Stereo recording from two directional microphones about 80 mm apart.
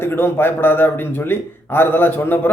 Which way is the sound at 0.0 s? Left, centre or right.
Left.